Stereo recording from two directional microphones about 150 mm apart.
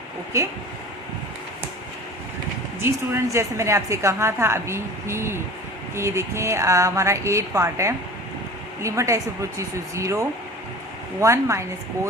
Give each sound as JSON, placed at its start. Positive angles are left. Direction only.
{"t": 0.3, "sound": "speech", "side_deg": -20}
{"t": 2.8, "sound": "a woman's voice", "side_deg": -15}